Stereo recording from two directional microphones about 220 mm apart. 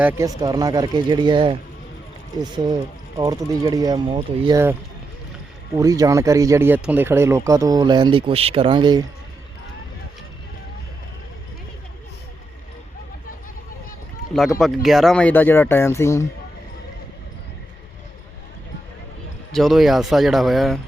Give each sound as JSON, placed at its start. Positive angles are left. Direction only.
{"t": 0.0, "sound": "speech", "side_deg": -10}
{"t": 5.7, "sound": "speech", "side_deg": -15}
{"t": 14.6, "sound": "speech", "side_deg": 0}
{"t": 19.5, "sound": "speech", "side_deg": 0}